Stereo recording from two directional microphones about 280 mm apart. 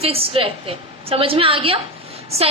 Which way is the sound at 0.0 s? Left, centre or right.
Right.